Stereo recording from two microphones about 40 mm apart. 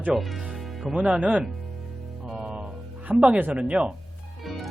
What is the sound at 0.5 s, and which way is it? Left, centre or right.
Music, centre.